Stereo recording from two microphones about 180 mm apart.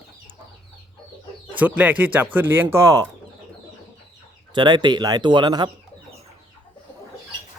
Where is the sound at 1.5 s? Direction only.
10° right (ahead or behind).